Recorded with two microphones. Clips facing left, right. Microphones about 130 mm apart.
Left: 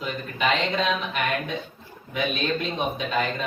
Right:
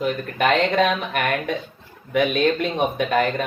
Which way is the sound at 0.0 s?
60° right (ahead or behind).